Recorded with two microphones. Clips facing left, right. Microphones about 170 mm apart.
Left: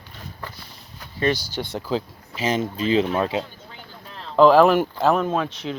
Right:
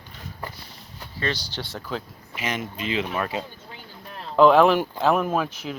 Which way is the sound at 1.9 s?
30° left (ahead or behind).